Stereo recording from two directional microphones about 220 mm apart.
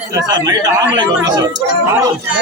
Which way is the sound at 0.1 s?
20° right (ahead or behind).